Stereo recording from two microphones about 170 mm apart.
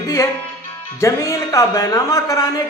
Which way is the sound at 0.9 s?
20° left (ahead or behind).